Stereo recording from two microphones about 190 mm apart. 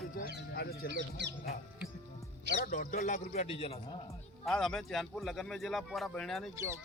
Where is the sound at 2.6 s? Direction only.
50° left (ahead or behind); by 3.8 s 30° left (ahead or behind).